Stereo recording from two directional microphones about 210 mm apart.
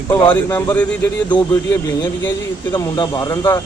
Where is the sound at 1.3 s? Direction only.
20° left (ahead or behind).